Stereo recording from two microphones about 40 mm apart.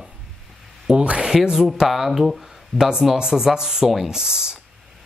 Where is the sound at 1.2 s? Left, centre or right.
Centre.